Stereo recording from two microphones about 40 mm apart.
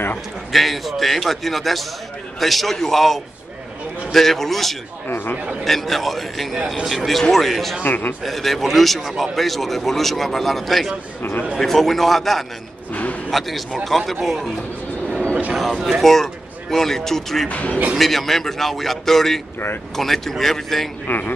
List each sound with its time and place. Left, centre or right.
0.5 s a man's voice: centre
5.0 s speech: left
5.6 s a man's voice: centre
7.8 s a man's voice: left
8.2 s a man's voice: centre
12.9 s a sound: left
13.3 s a man's voice: centre
15.5 s a man's voice: centre
17.5 s speech: left
17.9 s speech: centre
21.1 s speech: left